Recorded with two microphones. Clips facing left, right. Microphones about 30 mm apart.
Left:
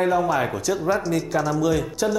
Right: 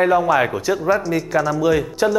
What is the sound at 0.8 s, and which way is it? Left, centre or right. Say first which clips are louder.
Speech: right 3 dB; centre.